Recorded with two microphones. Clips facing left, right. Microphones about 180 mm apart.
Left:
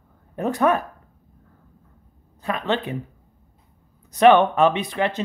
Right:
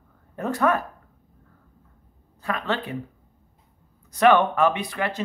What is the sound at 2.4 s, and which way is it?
Speech, 20° left (ahead or behind).